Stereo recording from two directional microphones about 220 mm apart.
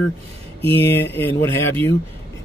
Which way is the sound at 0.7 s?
10° left (ahead or behind).